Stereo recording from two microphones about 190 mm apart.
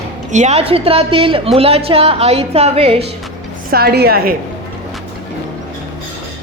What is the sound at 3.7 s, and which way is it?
Speech, 55° right (ahead or behind).